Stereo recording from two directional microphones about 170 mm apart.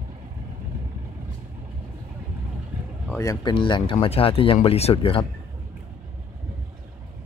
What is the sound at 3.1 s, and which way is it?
Speech, 20° left (ahead or behind).